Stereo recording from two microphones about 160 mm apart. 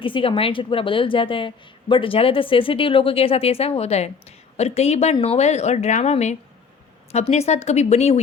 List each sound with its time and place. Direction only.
0.0 s a woman's voice: 35° left (ahead or behind)